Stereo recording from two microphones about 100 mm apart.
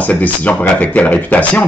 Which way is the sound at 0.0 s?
15° left (ahead or behind).